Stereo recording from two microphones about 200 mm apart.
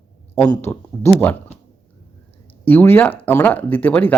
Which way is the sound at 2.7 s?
10° left (ahead or behind).